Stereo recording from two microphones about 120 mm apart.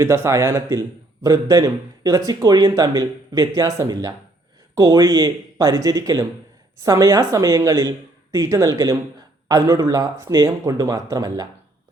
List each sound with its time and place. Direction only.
0.0 s a man's voice: 25° right (ahead or behind)